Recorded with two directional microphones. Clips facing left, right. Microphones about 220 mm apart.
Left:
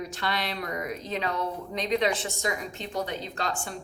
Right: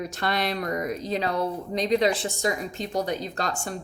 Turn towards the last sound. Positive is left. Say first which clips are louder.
# right 3 dB
turn(degrees=-40)  # may be behind; listen again after turning